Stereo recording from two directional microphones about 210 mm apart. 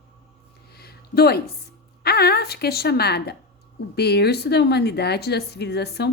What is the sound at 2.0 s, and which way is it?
A woman's voice, 50° left (ahead or behind).